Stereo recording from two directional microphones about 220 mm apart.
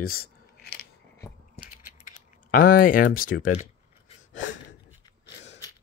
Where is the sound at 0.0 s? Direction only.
45° left (ahead or behind).